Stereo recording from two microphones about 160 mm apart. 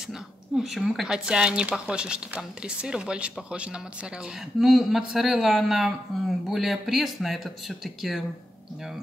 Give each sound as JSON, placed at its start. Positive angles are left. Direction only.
{"t": 0.6, "sound": "speech", "side_deg": 0}